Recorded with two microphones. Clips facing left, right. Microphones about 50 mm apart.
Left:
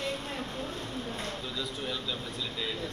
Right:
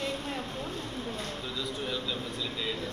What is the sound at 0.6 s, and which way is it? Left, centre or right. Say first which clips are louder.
Speech: even; left.